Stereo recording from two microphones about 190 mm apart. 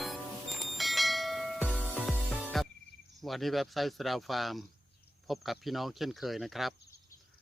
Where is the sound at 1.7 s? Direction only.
10° left (ahead or behind).